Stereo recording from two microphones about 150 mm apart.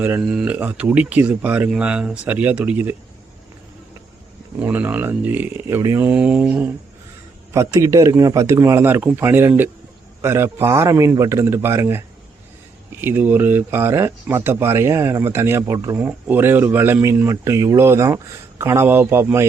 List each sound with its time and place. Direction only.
0.0 s speech: 10° right (ahead or behind)
4.6 s speech: 10° right (ahead or behind)
7.5 s a man's voice: 20° right (ahead or behind)